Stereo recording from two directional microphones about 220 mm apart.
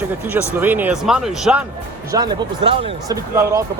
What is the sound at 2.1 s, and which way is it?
Speech, 20° right (ahead or behind).